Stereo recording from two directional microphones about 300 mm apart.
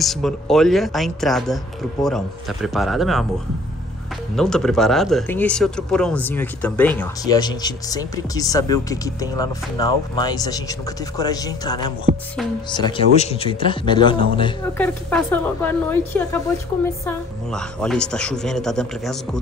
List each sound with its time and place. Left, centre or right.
0.0 s speech: centre
4.4 s speech: centre
14.8 s speech: centre